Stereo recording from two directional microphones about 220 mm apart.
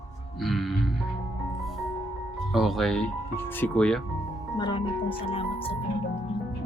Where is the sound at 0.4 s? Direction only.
Centre (ahead or behind).